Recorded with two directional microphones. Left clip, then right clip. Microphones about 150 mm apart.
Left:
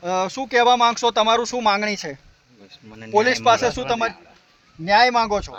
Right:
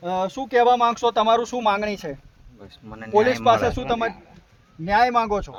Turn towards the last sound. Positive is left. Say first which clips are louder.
# left 2 dB
turn(degrees=-35)  # may be behind; listen again after turning